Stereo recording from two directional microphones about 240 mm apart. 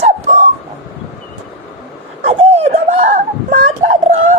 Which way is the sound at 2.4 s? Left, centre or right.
Right.